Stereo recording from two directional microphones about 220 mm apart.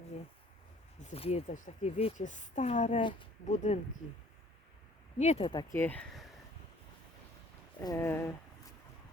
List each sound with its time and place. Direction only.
1.0 s speech: 25° left (ahead or behind)
5.1 s speech: 30° left (ahead or behind)
5.7 s speech: 10° left (ahead or behind)
7.8 s speech: 15° left (ahead or behind)